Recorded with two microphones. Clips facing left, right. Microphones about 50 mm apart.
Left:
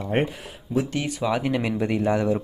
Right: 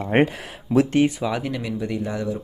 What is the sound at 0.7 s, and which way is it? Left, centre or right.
Speech, right.